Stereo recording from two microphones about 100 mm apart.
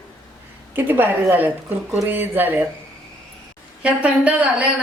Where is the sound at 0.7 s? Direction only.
20° right (ahead or behind).